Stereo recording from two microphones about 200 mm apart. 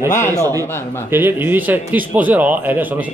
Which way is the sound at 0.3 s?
15° right (ahead or behind).